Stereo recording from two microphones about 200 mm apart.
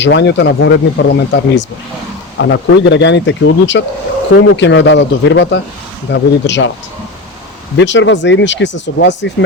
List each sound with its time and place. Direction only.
0.0 s speech: 60° left (ahead or behind)
7.8 s speech: 65° left (ahead or behind)